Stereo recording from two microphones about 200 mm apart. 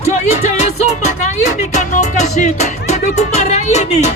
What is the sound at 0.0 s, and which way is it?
Music, 35° left (ahead or behind).